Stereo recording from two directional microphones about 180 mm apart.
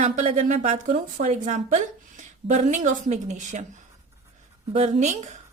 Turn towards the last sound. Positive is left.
turn(degrees=-40)  # may be behind; listen again after turning